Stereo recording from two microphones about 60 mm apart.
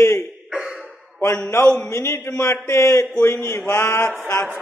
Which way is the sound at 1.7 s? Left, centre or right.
Left.